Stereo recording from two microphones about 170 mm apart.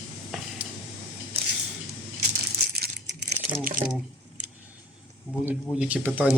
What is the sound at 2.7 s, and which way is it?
Crumpling, 70° right (ahead or behind).